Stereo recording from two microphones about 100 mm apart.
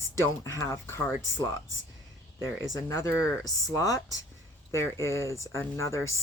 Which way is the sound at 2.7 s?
30° left (ahead or behind).